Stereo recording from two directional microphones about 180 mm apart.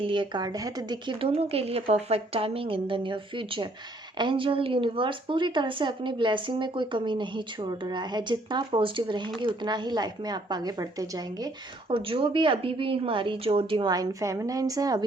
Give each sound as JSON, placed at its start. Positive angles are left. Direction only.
{"t": 0.0, "sound": "a woman's voice", "side_deg": -25}